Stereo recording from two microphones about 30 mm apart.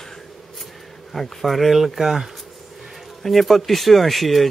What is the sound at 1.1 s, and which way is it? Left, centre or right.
Speech, centre.